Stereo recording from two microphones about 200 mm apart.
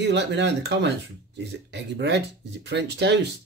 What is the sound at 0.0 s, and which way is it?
Speech, 60° right (ahead or behind).